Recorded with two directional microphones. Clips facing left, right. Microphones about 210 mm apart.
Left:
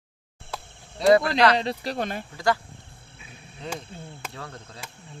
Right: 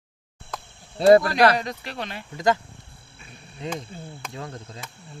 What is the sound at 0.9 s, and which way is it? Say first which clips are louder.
Speech: right 4 dB; 30° right (ahead or behind).